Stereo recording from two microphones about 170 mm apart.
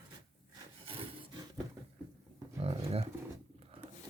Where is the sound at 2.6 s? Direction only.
35° right (ahead or behind).